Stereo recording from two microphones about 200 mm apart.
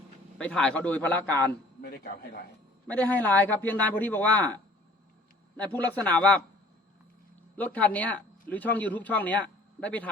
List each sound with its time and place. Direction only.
0.3 s a man's voice: 5° left (ahead or behind)
1.8 s speech: 50° left (ahead or behind)
2.8 s a man's voice: 5° left (ahead or behind)
5.5 s a man's voice: 5° left (ahead or behind)
7.5 s speech: 10° left (ahead or behind)